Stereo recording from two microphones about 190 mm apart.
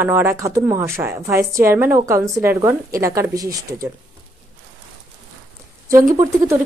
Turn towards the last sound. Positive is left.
turn(degrees=-15)  # may be behind; listen again after turning